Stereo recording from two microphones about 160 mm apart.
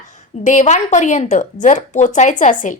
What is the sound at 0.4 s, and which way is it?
A woman's voice, 50° left (ahead or behind).